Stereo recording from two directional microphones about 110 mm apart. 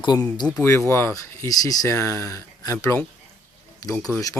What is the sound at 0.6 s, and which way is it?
Speech, 20° left (ahead or behind).